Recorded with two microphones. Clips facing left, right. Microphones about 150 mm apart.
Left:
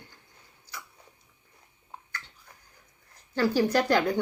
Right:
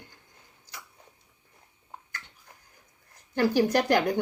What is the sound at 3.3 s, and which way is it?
Speech, 15° right (ahead or behind).